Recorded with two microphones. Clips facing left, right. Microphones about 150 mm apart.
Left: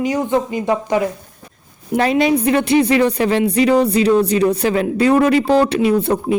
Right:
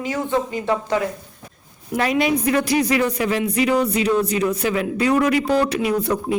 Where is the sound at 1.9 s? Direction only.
30° left (ahead or behind).